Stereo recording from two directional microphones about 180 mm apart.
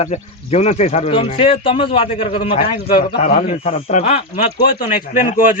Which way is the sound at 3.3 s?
55° left (ahead or behind).